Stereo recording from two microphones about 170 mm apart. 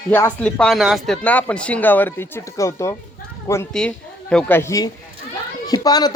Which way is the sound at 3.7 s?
5° left (ahead or behind).